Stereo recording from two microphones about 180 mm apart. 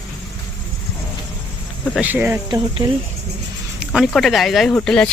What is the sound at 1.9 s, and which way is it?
Speech, 10° right (ahead or behind).